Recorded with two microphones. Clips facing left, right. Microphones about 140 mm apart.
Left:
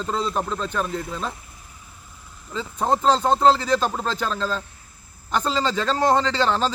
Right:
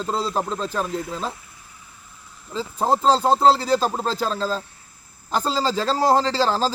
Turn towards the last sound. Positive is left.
turn(degrees=-35)  # may be behind; listen again after turning